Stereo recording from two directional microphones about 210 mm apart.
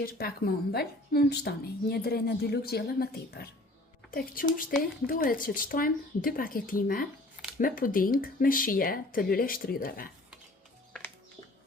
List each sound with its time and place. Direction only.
0.0 s speech: 45° left (ahead or behind)